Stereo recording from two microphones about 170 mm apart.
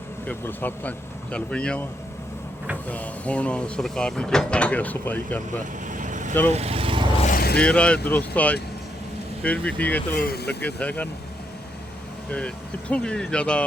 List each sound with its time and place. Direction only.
0.3 s speech: 10° left (ahead or behind)
2.9 s speech: 10° left (ahead or behind)
5.9 s vehicle: 50° right (ahead or behind)
6.5 s speech: 40° right (ahead or behind)
7.2 s vehicle: 55° left (ahead or behind)
7.6 s speech: 5° left (ahead or behind)
10.2 s speech: 65° left (ahead or behind)
10.6 s speech: 10° left (ahead or behind)
12.9 s speech: 5° left (ahead or behind)